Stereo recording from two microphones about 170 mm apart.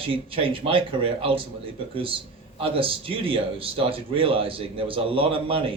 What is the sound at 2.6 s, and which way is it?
Speech, 35° right (ahead or behind).